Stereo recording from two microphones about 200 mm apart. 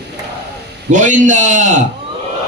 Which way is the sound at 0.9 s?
40° right (ahead or behind).